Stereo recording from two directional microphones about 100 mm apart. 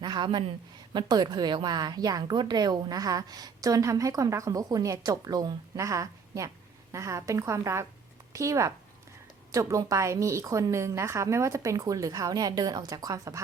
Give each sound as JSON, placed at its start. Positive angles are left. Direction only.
{"t": 0.0, "sound": "a woman's voice", "side_deg": -45}